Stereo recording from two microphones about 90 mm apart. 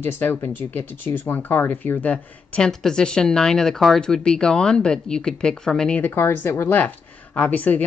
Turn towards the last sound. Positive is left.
turn(degrees=15)  # may be behind; listen again after turning